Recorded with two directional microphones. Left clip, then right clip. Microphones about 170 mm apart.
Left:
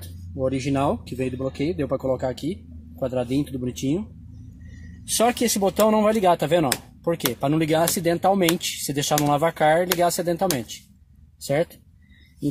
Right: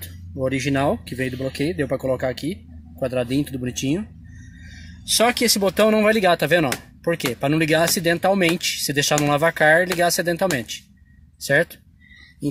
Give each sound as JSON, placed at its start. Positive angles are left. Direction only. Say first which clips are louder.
{"t": 0.5, "sound": "speech", "louder": "right 2 dB", "side_deg": -20}
{"t": 5.1, "sound": "speech", "louder": "right 3 dB", "side_deg": -15}